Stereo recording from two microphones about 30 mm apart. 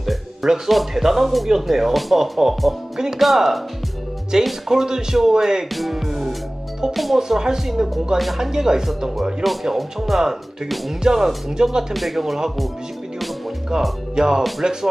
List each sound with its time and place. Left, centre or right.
0.0 s music: centre
0.7 s speech: centre
4.3 s speech: right
5.7 s speech: centre
7.2 s speech: centre
9.4 s speech: centre
11.1 s speech: centre
11.9 s speech: centre
13.7 s speech: right